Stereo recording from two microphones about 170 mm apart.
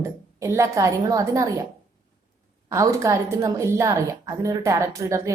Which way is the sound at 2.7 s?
15° right (ahead or behind).